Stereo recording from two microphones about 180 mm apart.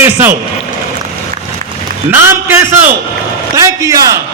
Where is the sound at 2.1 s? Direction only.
15° right (ahead or behind).